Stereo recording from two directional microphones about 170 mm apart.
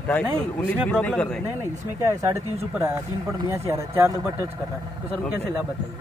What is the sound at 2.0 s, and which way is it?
Speech, 15° right (ahead or behind).